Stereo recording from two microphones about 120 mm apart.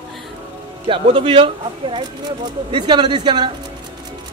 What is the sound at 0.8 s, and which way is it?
Speech, 45° right (ahead or behind).